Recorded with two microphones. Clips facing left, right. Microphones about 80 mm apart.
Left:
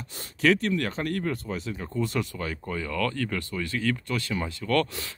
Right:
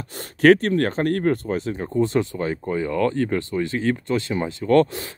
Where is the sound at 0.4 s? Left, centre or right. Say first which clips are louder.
Right 8 dB; right.